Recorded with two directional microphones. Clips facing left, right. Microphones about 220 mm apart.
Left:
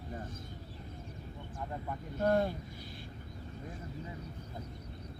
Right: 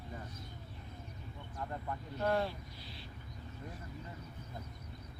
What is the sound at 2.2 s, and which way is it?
Speech, 50° left (ahead or behind).